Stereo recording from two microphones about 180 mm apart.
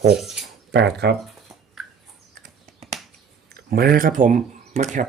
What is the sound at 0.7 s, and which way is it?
Speech, 70° right (ahead or behind).